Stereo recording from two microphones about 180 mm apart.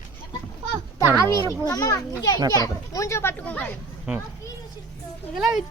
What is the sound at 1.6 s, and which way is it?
Speech, 15° left (ahead or behind).